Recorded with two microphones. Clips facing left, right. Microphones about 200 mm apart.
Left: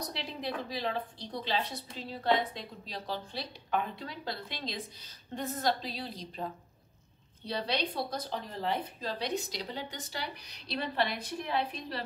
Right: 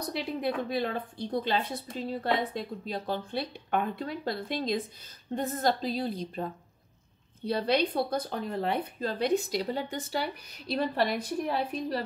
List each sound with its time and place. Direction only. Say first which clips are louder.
0.0 s a woman's voice: right 7 dB; 55° right (ahead or behind)
7.4 s a woman's voice: right 7 dB; 55° right (ahead or behind)